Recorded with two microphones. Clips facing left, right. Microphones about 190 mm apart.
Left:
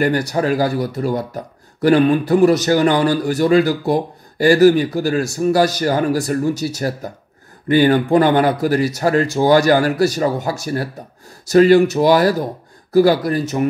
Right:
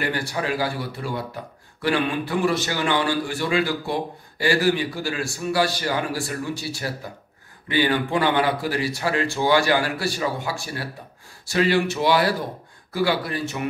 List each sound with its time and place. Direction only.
0.0 s speech: 40° left (ahead or behind)